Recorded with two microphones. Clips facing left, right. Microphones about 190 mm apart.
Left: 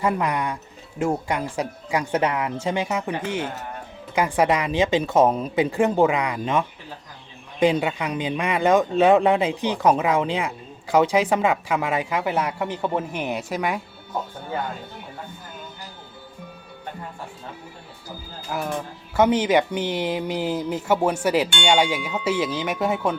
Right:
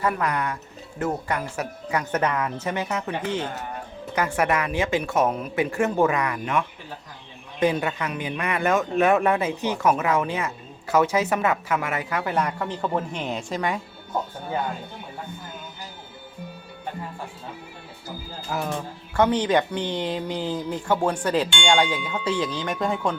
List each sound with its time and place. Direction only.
0.0 s speech: 15° left (ahead or behind)
18.4 s speech: centre (ahead or behind); by 20.8 s 20° left (ahead or behind)
20.8 s speech: 5° left (ahead or behind)